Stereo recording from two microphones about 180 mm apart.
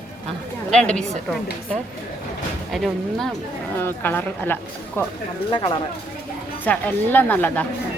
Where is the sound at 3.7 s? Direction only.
10° left (ahead or behind).